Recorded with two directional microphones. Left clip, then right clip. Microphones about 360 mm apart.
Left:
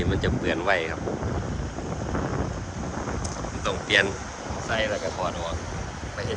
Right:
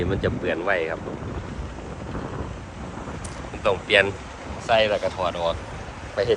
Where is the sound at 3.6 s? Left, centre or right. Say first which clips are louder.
Right 4 dB; centre.